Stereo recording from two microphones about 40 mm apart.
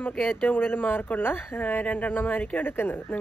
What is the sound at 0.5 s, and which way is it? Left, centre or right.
Speech, left.